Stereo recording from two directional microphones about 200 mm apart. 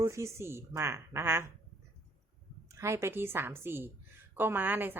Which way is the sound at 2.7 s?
15° right (ahead or behind).